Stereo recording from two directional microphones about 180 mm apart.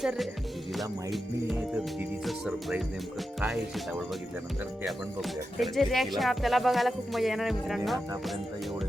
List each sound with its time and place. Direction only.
0.0 s speech: centre (ahead or behind)